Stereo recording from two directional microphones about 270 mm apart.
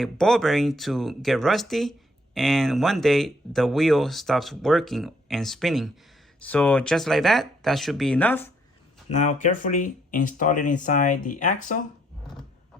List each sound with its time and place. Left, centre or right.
0.0 s speech: centre
9.0 s speech: left